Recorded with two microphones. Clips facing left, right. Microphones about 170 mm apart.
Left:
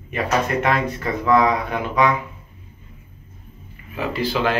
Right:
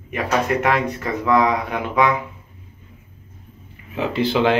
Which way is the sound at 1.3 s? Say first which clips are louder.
Left 1 dB; 10° right (ahead or behind).